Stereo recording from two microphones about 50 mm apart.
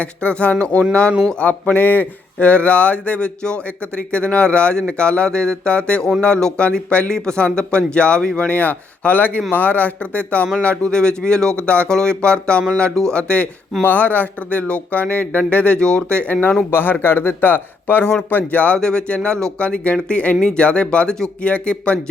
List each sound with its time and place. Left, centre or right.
0.0 s speech: left
8.4 s a man's voice: left
13.8 s speech: left
16.7 s a man's voice: left
18.8 s speech: centre